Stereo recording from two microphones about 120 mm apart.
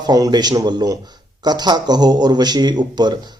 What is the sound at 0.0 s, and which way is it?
Speech, 35° right (ahead or behind).